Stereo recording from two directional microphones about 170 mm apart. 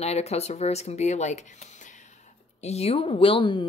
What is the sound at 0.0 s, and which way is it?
Speech, 40° left (ahead or behind).